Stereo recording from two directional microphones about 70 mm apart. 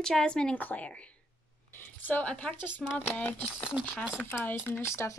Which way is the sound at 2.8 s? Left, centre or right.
Centre.